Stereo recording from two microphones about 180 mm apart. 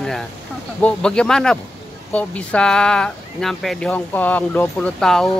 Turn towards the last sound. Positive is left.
turn(degrees=5)  # may be behind; listen again after turning